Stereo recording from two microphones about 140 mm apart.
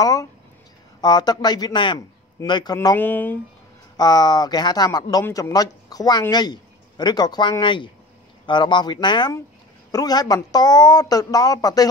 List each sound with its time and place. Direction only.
0.0 s a man's voice: 25° left (ahead or behind)
3.0 s speech: 10° left (ahead or behind)
3.9 s a man's voice: 30° left (ahead or behind)